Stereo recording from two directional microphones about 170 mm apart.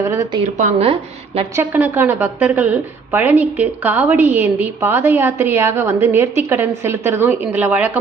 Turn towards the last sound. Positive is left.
turn(degrees=-10)  # may be behind; listen again after turning